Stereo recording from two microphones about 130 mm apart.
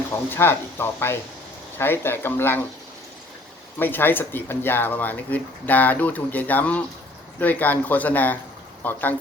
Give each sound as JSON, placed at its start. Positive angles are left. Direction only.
{"t": 0.1, "sound": "speech", "side_deg": 15}
{"t": 3.8, "sound": "speech", "side_deg": 15}